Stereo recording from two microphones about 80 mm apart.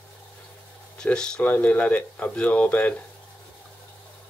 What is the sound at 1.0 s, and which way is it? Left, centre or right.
Speech, centre.